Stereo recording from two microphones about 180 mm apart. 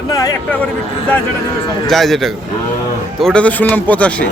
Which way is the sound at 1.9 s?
Centre (ahead or behind).